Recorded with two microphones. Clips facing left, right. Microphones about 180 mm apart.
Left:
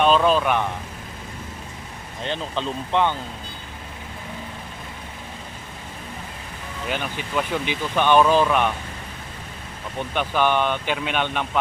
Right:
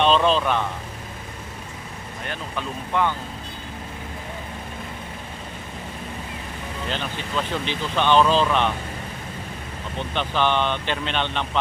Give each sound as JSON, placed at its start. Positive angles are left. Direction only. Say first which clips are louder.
{"t": 0.0, "sound": "speech", "louder": "left 1 dB", "side_deg": 5}
{"t": 2.2, "sound": "speech", "louder": "left 5 dB", "side_deg": 25}
{"t": 6.8, "sound": "speech", "louder": "left 2 dB", "side_deg": 10}
{"t": 10.2, "sound": "speech", "louder": "left 1 dB", "side_deg": 10}